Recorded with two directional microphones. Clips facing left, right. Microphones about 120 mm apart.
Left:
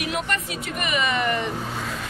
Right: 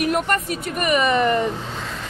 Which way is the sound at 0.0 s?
50° right (ahead or behind).